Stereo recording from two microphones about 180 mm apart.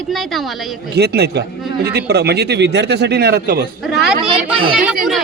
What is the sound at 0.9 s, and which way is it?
Speech, 65° right (ahead or behind).